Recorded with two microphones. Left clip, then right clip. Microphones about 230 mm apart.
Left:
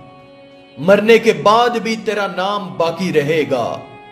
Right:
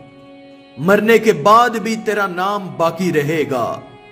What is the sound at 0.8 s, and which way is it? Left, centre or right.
A man's voice, right.